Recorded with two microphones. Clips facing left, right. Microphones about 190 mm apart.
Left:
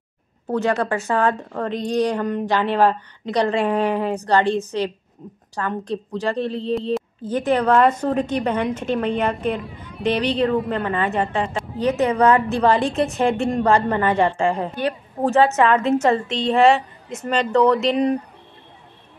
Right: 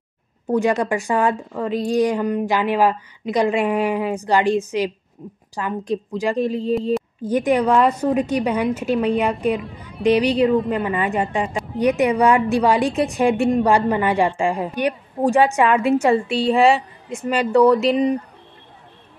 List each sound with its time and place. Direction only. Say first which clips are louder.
0.5 s a woman's voice: right 2 dB; 15° right (ahead or behind)
6.7 s speech: right 1 dB; centre (ahead or behind)
7.2 s a woman's voice: right 1 dB; 10° right (ahead or behind)